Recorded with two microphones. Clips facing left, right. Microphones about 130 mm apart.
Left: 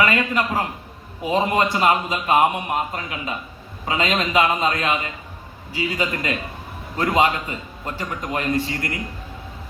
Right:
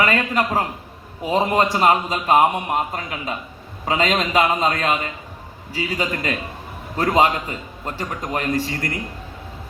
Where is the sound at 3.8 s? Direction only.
35° right (ahead or behind).